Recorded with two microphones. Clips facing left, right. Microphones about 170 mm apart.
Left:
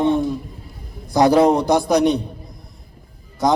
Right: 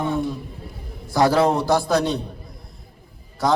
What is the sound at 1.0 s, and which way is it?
A man's voice, 20° left (ahead or behind).